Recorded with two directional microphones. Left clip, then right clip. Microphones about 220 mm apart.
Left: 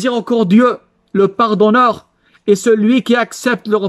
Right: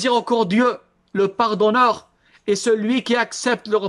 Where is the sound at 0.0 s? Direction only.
35° left (ahead or behind).